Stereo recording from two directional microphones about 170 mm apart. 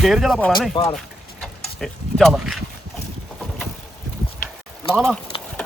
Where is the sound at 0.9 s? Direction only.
Centre (ahead or behind).